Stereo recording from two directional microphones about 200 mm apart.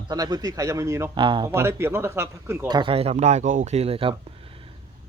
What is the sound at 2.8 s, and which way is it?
Speech, 30° right (ahead or behind).